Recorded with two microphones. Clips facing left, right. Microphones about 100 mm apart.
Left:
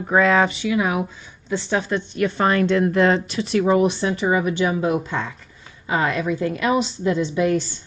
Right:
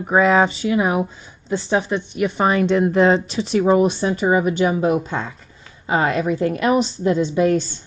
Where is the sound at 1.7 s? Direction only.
15° right (ahead or behind).